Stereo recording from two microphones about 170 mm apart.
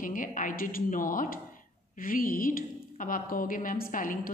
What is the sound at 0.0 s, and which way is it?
A woman's voice, 50° left (ahead or behind).